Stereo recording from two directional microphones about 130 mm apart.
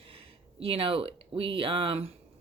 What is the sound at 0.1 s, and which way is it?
Speech, 45° right (ahead or behind).